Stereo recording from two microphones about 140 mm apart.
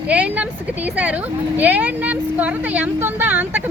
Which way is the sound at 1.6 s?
10° right (ahead or behind).